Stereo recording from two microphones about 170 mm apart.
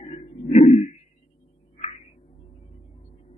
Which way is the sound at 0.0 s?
35° left (ahead or behind).